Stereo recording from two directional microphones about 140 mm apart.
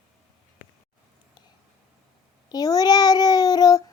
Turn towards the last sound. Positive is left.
turn(degrees=25)  # may be behind; listen again after turning